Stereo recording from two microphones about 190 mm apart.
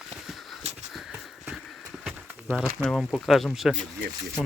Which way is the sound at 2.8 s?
Centre (ahead or behind).